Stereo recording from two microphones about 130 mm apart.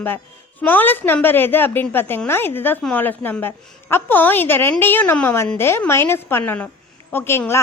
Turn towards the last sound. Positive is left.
turn(degrees=20)  # may be behind; listen again after turning